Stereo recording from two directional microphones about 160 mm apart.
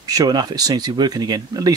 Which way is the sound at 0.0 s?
20° right (ahead or behind).